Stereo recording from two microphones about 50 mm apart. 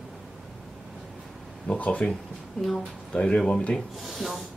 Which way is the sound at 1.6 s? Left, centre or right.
Left.